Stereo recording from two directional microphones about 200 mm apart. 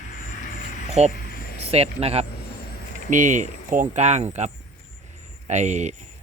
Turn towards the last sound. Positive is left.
turn(degrees=-35)  # may be behind; listen again after turning